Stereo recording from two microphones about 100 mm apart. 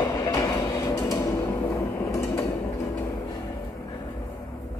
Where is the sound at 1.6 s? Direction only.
20° left (ahead or behind).